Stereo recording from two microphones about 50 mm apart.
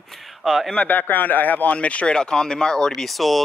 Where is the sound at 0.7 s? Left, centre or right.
Left; by 2.9 s centre.